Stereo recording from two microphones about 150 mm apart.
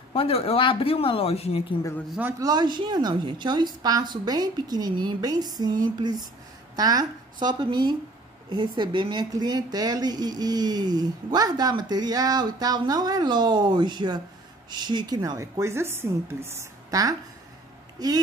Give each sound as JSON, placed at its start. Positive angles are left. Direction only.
{"t": 0.1, "sound": "speech", "side_deg": 40}
{"t": 2.1, "sound": "speech", "side_deg": -15}
{"t": 2.4, "sound": "speech", "side_deg": -30}